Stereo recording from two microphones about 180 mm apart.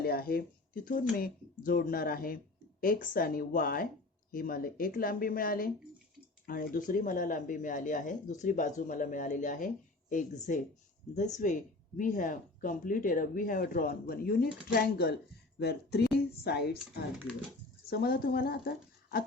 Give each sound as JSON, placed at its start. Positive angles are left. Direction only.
{"t": 0.0, "sound": "speech", "side_deg": 55}
{"t": 17.8, "sound": "speech", "side_deg": 60}